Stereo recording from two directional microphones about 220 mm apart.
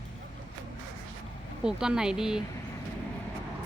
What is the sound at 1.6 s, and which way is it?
Speech, 5° right (ahead or behind).